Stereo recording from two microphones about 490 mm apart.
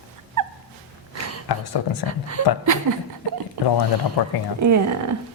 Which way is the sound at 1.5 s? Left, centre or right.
Left.